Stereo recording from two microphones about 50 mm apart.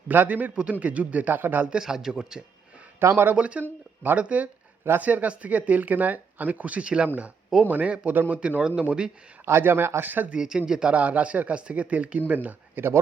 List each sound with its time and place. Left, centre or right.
0.1 s speech: right
1.6 s speech: centre
3.0 s speech: right
3.3 s speech: right
3.6 s speech: right
7.7 s speech: right
8.4 s speech: right
9.5 s speech: right
10.2 s speech: centre
10.9 s speech: right